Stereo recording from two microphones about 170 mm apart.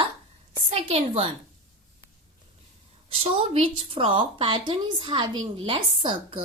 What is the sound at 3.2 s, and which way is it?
A woman's voice, 30° right (ahead or behind).